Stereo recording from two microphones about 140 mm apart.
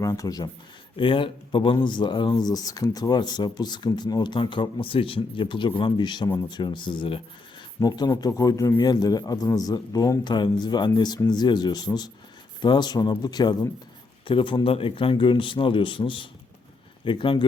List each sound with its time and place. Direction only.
0.0 s speech: 25° left (ahead or behind)
0.9 s speech: 35° left (ahead or behind)